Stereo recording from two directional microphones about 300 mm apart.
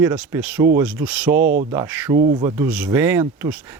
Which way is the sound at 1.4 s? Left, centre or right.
Right.